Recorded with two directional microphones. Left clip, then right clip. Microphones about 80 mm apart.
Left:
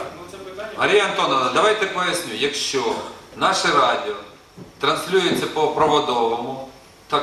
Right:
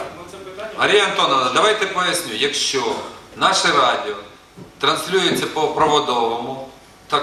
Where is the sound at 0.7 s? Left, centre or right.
Centre.